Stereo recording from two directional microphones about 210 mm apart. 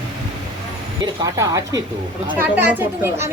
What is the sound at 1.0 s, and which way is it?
A woman's voice, 15° right (ahead or behind).